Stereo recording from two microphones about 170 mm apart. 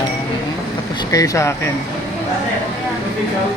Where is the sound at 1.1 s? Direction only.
20° left (ahead or behind).